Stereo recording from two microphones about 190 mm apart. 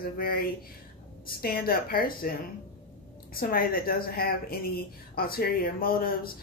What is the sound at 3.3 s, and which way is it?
Speech, 50° left (ahead or behind).